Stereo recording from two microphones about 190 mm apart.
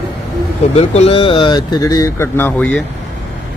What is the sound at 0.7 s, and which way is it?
Speech, 35° left (ahead or behind).